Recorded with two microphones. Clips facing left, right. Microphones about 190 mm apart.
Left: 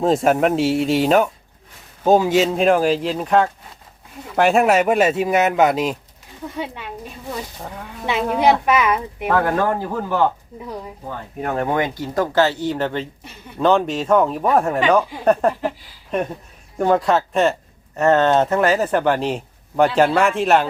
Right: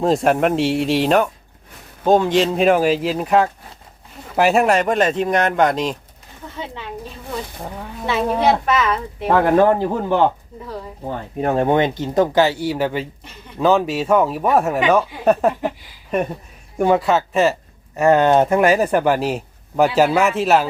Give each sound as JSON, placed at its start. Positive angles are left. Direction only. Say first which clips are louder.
{"t": 0.0, "sound": "speech", "louder": "even", "side_deg": 0}
{"t": 8.0, "sound": "speech", "louder": "even", "side_deg": 15}
{"t": 9.3, "sound": "speech", "louder": "right 5 dB", "side_deg": -20}